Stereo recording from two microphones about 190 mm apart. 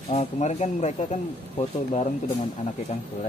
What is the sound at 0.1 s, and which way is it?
Speech, 40° left (ahead or behind).